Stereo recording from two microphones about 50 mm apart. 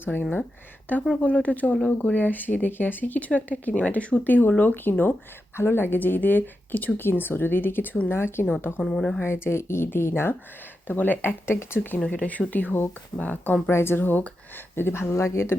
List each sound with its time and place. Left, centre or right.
0.0 s speech: left
1.1 s a woman's voice: left
8.8 s speech: centre
9.2 s speech: left
10.8 s a woman's voice: left
12.1 s speech: left
13.1 s speech: left
13.7 s a woman's voice: left